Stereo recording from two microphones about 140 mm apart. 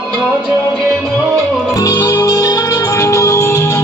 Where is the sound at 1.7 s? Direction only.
25° left (ahead or behind).